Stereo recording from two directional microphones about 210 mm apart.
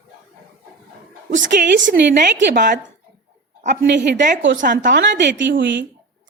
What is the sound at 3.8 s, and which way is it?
Speech, 55° right (ahead or behind).